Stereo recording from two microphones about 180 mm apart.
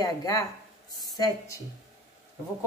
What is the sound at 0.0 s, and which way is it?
Speech, 20° left (ahead or behind).